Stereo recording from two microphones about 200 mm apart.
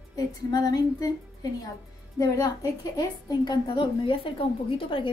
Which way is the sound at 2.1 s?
15° left (ahead or behind).